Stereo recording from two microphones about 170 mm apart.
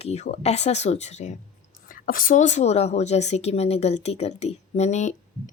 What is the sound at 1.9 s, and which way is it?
Speech, 55° left (ahead or behind).